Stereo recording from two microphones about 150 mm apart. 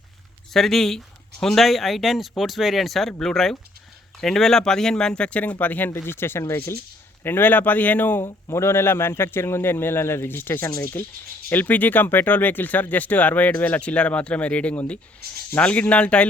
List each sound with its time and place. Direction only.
0.5 s speech: centre (ahead or behind)